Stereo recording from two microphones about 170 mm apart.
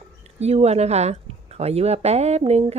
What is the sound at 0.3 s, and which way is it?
A woman's voice, 40° right (ahead or behind).